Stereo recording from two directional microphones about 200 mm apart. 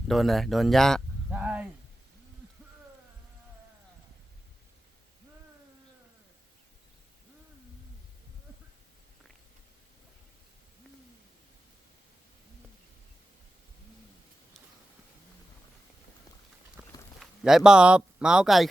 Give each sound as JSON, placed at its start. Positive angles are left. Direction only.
{"t": 0.1, "sound": "speech", "side_deg": 0}
{"t": 16.8, "sound": "livestock", "side_deg": -10}
{"t": 17.2, "sound": "speech", "side_deg": 0}